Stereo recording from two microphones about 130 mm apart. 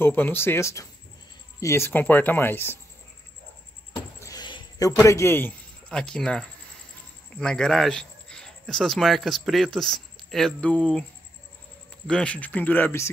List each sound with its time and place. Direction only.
0.0 s speech: 15° left (ahead or behind)
3.9 s a sound: 30° left (ahead or behind)
5.0 s a man's voice: 20° left (ahead or behind)
5.9 s speech: 5° left (ahead or behind)
12.1 s speech: 10° left (ahead or behind)